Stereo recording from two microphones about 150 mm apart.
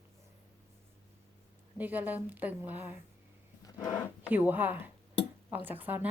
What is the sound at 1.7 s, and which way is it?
Speech, 10° right (ahead or behind).